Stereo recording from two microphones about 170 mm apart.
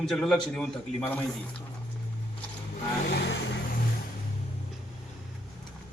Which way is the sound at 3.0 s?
75° left (ahead or behind).